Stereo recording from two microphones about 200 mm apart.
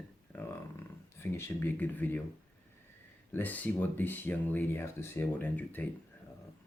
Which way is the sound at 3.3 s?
10° left (ahead or behind).